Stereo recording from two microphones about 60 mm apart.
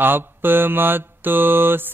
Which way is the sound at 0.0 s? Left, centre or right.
Right.